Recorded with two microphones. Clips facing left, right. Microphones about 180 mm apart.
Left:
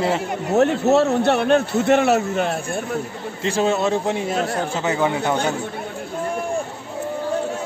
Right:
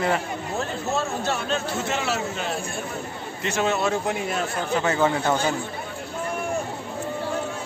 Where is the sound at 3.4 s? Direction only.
30° left (ahead or behind).